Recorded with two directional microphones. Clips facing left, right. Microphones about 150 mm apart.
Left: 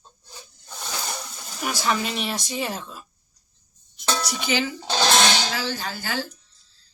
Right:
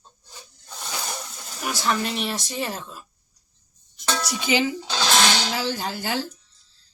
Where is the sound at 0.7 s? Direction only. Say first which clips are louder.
Even; centre (ahead or behind).